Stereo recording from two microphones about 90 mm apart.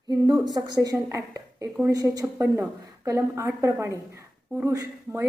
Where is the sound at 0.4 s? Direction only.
45° right (ahead or behind).